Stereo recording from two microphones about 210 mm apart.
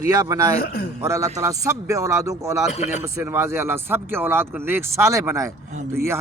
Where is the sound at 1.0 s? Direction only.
15° right (ahead or behind).